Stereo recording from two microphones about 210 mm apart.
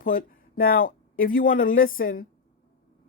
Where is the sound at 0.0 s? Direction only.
40° left (ahead or behind).